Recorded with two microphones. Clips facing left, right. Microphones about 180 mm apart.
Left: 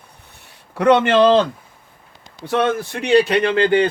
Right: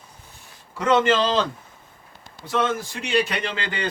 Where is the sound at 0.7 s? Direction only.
60° left (ahead or behind).